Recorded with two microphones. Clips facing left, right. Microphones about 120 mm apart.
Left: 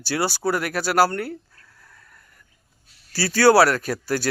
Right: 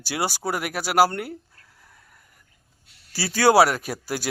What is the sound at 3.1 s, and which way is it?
Speech, 15° right (ahead or behind).